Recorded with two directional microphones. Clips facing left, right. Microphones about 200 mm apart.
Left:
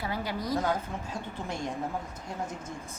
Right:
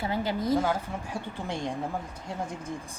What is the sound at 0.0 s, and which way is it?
Speech, 25° right (ahead or behind).